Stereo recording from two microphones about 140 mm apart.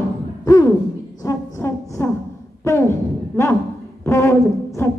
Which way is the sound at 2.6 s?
20° left (ahead or behind).